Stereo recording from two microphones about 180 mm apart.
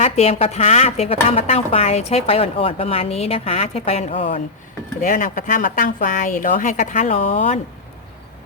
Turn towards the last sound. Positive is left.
turn(degrees=35)  # may be behind; listen again after turning